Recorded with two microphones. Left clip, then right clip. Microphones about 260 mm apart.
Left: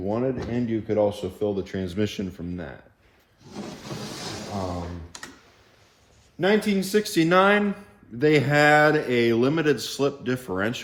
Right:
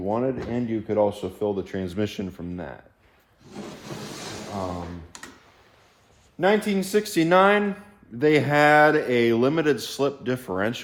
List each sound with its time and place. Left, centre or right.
0.0 s speech: right
3.5 s a sound: centre
4.7 s computer keyboard: centre
6.4 s speech: right